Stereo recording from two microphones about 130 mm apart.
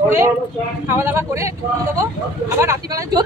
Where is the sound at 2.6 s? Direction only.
20° right (ahead or behind).